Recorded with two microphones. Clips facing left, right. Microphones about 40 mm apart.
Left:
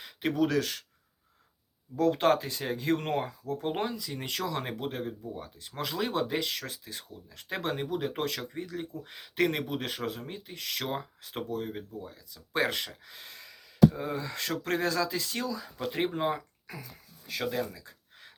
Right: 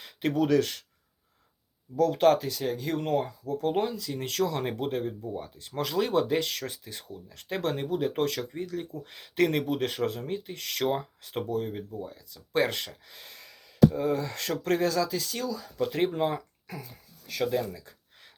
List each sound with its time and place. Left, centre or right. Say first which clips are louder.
0.0 s a sound: right 2 dB; centre
2.0 s speech: right 3 dB; left
2.6 s speech: even; left
3.6 s speech: right 5 dB; left
4.6 s speech: right 5 dB; centre
12.7 s speech: left 1 dB; centre
14.8 s speech: right 2 dB; left
15.8 s speech: right 4 dB; centre